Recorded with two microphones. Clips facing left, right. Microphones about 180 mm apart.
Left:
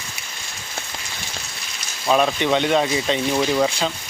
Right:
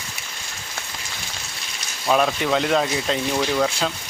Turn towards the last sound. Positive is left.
turn(degrees=10)  # may be behind; listen again after turning